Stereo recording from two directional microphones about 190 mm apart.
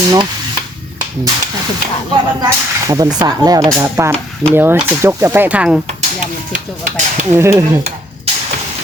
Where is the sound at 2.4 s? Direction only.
20° right (ahead or behind).